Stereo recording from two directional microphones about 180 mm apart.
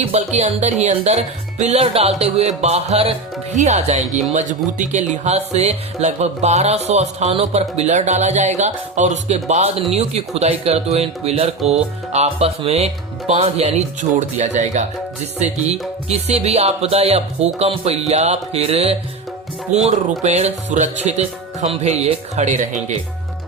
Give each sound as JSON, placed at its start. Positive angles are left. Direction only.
{"t": 0.0, "sound": "speech", "side_deg": -35}